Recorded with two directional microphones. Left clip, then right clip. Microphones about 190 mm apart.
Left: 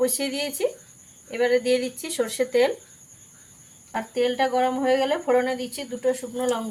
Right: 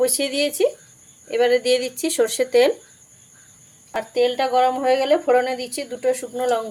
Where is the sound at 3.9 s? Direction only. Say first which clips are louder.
Right 4 dB; 50° right (ahead or behind).